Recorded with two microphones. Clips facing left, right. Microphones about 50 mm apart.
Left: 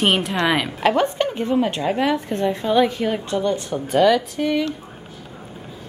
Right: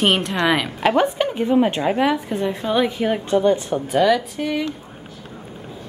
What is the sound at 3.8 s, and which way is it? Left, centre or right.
Speech, centre.